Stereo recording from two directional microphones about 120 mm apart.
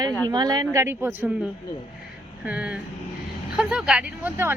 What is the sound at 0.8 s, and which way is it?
Speech, 20° right (ahead or behind).